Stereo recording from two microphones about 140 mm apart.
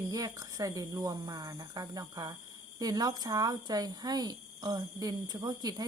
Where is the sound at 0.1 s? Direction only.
25° right (ahead or behind).